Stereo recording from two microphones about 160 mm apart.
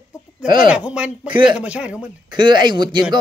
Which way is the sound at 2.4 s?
30° right (ahead or behind).